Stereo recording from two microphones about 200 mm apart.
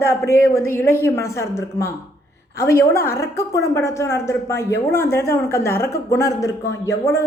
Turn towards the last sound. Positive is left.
turn(degrees=15)  # may be behind; listen again after turning